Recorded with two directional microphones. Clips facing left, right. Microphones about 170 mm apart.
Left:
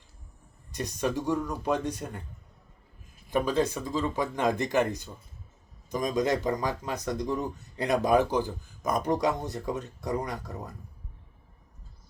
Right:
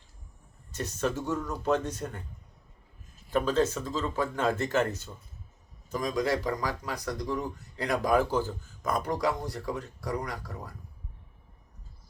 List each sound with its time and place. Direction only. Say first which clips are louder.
0.7 s speech: left 1 dB; 15° left (ahead or behind)
3.2 s speech: even; 15° left (ahead or behind)